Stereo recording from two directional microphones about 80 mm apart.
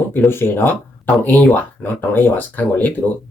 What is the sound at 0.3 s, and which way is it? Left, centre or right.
Speech, left.